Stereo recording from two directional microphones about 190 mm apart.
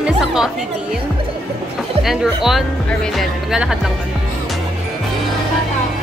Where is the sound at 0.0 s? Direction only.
5° right (ahead or behind).